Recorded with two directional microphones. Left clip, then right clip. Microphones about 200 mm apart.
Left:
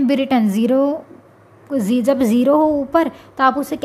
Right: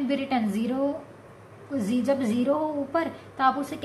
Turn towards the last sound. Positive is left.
turn(degrees=50)  # may be behind; listen again after turning